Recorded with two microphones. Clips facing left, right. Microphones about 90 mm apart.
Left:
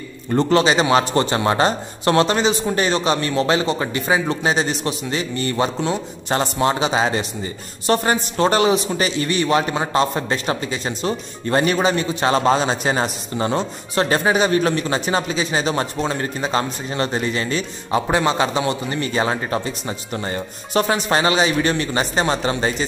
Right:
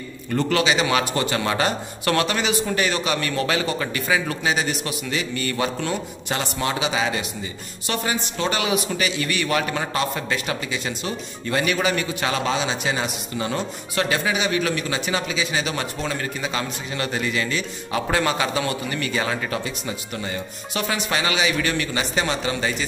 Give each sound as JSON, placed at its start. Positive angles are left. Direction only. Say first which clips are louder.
{"t": 0.3, "sound": "a man's voice", "louder": "left 5 dB", "side_deg": 30}
{"t": 18.0, "sound": "a man's voice", "louder": "left 2 dB", "side_deg": 20}